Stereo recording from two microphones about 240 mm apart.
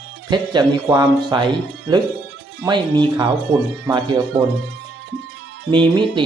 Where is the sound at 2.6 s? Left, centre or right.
Centre.